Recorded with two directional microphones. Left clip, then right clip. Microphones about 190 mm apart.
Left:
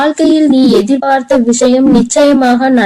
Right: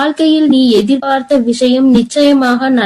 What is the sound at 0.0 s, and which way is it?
A woman's voice, 30° left (ahead or behind).